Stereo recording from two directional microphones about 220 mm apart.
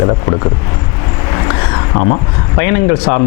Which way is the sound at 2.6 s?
15° left (ahead or behind).